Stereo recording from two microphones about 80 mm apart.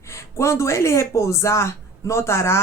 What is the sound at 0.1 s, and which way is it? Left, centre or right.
Speech, left.